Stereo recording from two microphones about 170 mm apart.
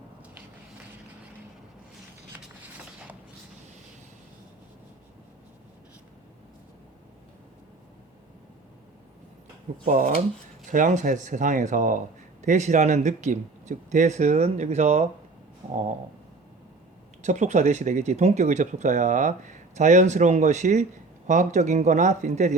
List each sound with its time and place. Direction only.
9.8 s a man's voice: 50° right (ahead or behind)
17.2 s a man's voice: 45° right (ahead or behind)